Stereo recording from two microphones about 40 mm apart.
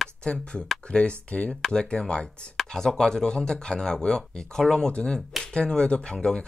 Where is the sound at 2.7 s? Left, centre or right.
Centre.